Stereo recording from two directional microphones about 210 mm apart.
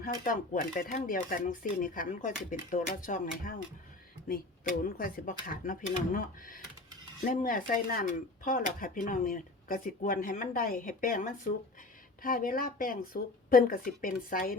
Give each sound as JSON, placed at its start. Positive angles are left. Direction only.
{"t": 0.0, "sound": "speech", "side_deg": 40}
{"t": 4.8, "sound": "a woman's voice", "side_deg": 45}